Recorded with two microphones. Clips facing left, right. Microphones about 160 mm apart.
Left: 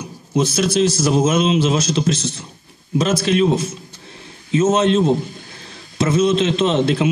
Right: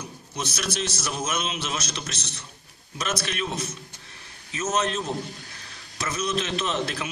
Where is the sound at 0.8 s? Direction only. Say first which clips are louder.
Left 14 dB; 25° left (ahead or behind).